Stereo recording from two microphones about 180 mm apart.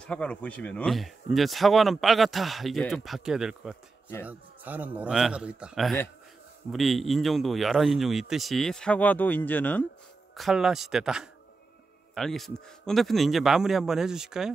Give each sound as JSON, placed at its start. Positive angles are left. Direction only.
{"t": 0.0, "sound": "a man's voice", "side_deg": 5}
{"t": 10.3, "sound": "speech", "side_deg": 0}